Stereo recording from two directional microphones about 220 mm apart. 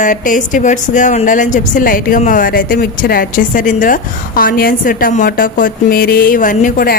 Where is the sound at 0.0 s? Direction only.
35° left (ahead or behind).